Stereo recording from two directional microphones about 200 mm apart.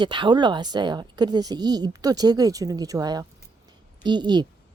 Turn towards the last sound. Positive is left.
turn(degrees=-20)  # may be behind; listen again after turning